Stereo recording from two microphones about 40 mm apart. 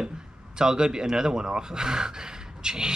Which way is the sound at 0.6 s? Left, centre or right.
Centre.